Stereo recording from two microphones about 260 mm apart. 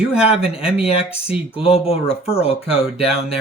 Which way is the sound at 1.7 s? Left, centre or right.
Left.